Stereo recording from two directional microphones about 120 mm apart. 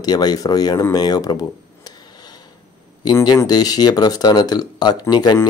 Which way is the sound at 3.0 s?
35° left (ahead or behind).